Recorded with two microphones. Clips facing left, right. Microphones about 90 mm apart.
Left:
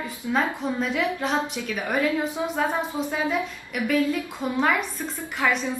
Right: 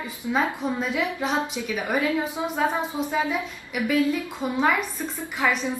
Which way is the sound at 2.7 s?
5° right (ahead or behind).